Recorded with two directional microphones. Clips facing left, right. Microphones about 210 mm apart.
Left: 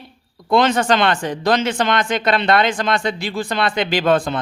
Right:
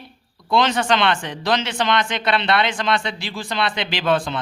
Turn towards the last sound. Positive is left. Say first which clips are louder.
# left 4 dB
turn(degrees=50)  # may be behind; listen again after turning